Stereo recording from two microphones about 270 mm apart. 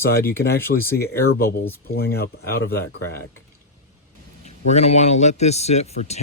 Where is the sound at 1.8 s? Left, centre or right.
Left.